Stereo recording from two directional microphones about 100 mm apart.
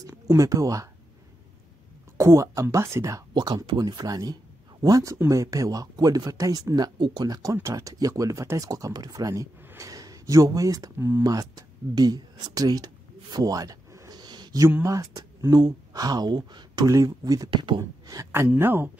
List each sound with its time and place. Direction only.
0.0 s speech: 35° right (ahead or behind)
2.1 s speech: 30° right (ahead or behind)
3.3 s speech: 45° right (ahead or behind)
9.7 s a sound: 35° right (ahead or behind)
11.0 s speech: 25° right (ahead or behind)
11.2 s a sound: 40° right (ahead or behind)
14.9 s speech: 35° right (ahead or behind)
16.9 s speech: 35° right (ahead or behind)